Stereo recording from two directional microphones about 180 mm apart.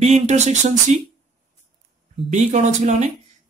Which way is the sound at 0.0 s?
40° right (ahead or behind).